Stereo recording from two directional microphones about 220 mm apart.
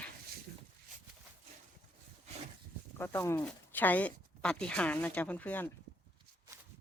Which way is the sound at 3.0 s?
10° left (ahead or behind).